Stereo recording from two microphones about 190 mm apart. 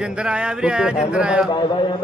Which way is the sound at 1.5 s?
25° left (ahead or behind).